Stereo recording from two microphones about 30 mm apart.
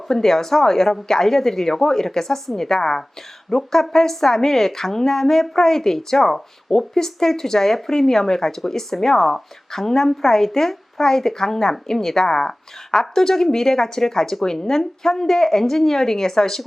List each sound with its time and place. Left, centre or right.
0.1 s a woman's voice: centre